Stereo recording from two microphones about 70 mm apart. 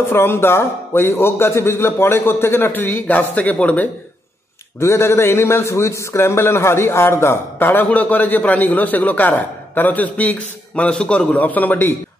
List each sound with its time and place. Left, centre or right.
0.1 s a man's voice: left
4.7 s a man's voice: left